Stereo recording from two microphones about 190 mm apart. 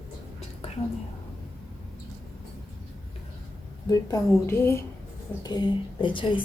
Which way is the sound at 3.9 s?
20° left (ahead or behind).